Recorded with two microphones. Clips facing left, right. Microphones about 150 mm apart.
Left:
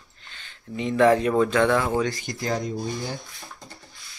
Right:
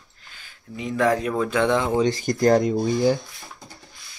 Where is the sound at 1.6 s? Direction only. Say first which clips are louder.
Right 1 dB; 15° right (ahead or behind).